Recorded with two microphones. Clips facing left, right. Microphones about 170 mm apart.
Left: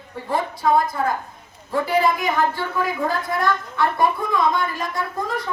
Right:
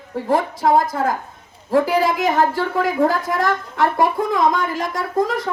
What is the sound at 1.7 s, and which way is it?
A woman's voice, 90° right.